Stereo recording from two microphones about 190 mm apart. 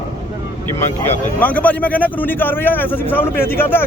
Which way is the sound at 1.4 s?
10° left (ahead or behind).